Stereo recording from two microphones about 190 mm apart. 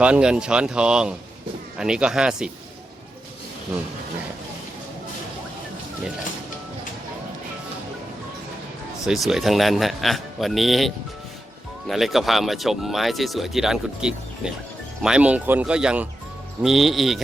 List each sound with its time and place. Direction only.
0.0 s speech: 5° right (ahead or behind)
9.0 s speech: centre (ahead or behind)